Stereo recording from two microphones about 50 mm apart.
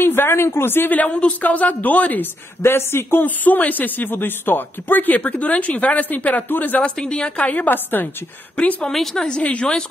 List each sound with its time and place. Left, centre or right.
0.0 s a sound: left
0.9 s speech: left
2.6 s speech: left
3.3 s speech: left
6.8 s a woman's voice: centre
7.4 s speech: left
8.9 s speech: centre
9.4 s a woman's voice: left